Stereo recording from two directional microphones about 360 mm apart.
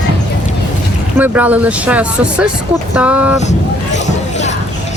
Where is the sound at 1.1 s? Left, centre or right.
Centre.